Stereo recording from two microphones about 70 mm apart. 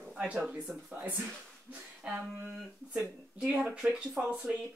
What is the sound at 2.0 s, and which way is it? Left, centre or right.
Speech, centre.